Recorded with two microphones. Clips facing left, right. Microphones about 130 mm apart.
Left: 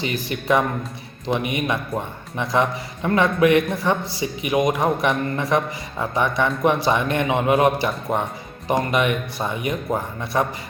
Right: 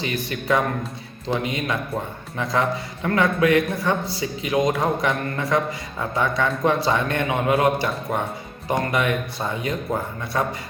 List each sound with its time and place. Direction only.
0.0 s a man's voice: 25° left (ahead or behind)